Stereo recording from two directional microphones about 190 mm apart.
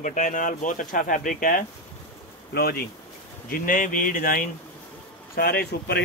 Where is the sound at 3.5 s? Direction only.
45° left (ahead or behind).